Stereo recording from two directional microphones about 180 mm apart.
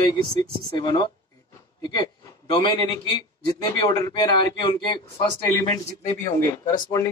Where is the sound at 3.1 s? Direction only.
25° left (ahead or behind).